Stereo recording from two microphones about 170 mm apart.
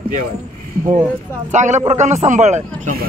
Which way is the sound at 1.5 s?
45° right (ahead or behind).